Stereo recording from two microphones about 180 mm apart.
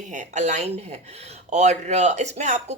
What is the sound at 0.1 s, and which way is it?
Speech, 40° right (ahead or behind).